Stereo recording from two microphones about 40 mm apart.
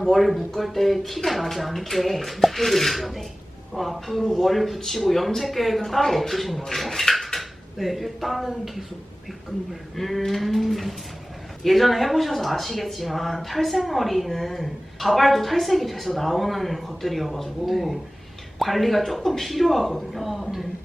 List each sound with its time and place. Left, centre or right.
0.0 s speech: centre
10.0 s speech: centre